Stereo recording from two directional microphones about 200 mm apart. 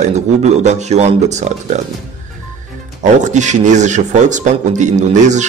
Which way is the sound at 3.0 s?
35° right (ahead or behind).